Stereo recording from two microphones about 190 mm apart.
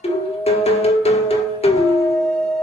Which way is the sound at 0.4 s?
35° left (ahead or behind).